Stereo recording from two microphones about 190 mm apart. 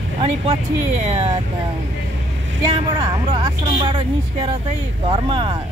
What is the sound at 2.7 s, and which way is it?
Speech, 30° right (ahead or behind).